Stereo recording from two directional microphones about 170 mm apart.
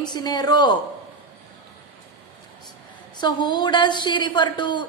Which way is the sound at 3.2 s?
25° left (ahead or behind).